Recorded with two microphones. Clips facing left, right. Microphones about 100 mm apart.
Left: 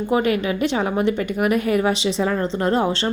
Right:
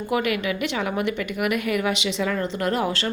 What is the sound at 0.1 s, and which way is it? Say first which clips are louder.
A woman's voice: left 4 dB; 35° left (ahead or behind).